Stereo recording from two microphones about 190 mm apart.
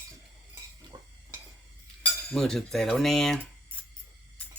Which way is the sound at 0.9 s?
15° right (ahead or behind).